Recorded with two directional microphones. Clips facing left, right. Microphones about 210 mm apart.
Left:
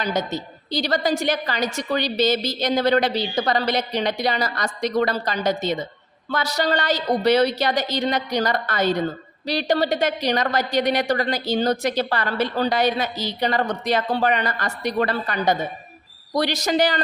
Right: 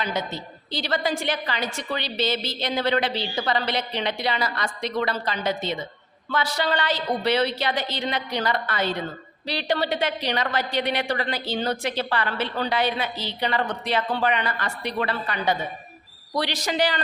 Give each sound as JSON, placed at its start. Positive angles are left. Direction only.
{"t": 0.0, "sound": "a woman's voice", "side_deg": 40}